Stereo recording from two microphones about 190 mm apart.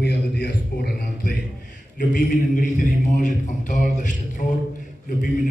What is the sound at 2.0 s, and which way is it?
A man's voice, 45° left (ahead or behind).